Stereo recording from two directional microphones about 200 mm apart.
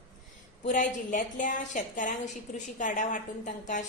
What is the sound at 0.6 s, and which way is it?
A woman's voice, 40° left (ahead or behind).